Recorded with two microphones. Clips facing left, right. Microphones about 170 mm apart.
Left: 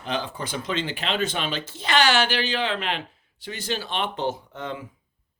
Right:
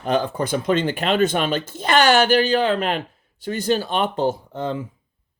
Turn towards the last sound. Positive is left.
turn(degrees=-30)  # may be behind; listen again after turning